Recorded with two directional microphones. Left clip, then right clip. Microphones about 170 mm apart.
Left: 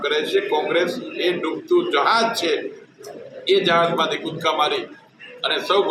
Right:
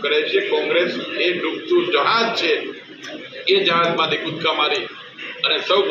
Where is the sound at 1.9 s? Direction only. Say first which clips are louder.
Even; 25° left (ahead or behind).